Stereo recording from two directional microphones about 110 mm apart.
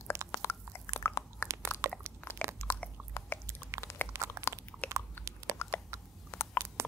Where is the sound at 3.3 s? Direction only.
20° left (ahead or behind).